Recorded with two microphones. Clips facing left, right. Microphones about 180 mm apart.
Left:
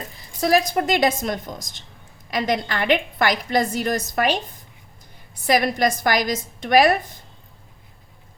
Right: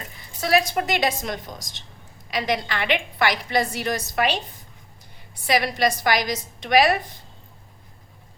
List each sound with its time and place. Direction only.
0.2 s a woman's voice: 40° left (ahead or behind)
5.5 s a woman's voice: 50° left (ahead or behind)